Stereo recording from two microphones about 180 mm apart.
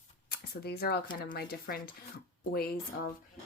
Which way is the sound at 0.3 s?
60° left (ahead or behind).